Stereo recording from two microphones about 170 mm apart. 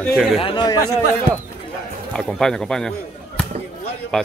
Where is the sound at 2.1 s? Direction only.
Centre (ahead or behind).